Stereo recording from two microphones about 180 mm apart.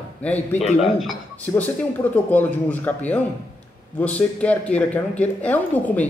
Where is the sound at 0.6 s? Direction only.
35° left (ahead or behind).